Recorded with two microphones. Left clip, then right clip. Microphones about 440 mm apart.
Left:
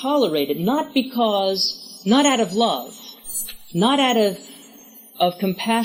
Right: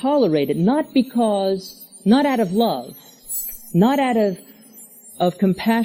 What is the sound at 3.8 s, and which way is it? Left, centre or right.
A woman's voice, right.